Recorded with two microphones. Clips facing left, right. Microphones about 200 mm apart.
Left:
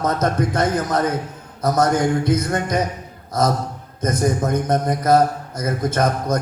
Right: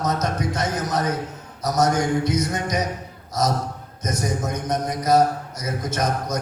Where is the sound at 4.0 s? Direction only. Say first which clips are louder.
Left 6 dB; 55° left (ahead or behind).